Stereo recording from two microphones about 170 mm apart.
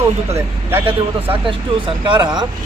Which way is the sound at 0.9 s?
35° right (ahead or behind).